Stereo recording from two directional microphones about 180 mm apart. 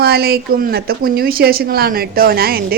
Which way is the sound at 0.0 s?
60° right (ahead or behind).